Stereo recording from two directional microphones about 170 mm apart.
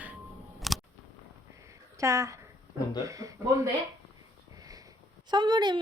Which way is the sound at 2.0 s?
20° right (ahead or behind).